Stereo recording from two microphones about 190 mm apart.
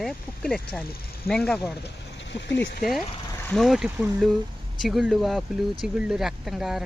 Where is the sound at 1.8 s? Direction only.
70° left (ahead or behind).